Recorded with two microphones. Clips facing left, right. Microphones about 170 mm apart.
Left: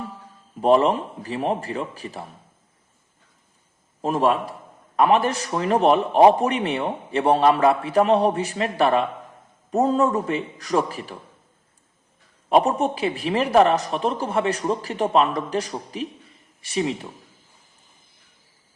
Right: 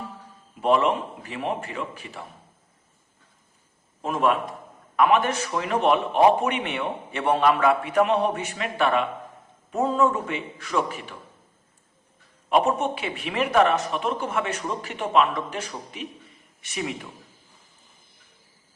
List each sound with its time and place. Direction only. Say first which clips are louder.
0.6 s a man's voice: left 4 dB; 35° left (ahead or behind)
4.0 s a man's voice: left 3 dB; 35° left (ahead or behind)
12.5 s a man's voice: left 3 dB; 35° left (ahead or behind)